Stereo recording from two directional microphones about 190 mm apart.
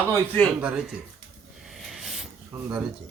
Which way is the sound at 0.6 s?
5° right (ahead or behind).